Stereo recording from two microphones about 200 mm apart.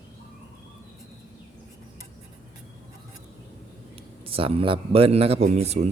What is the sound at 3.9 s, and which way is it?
Speech, 25° right (ahead or behind).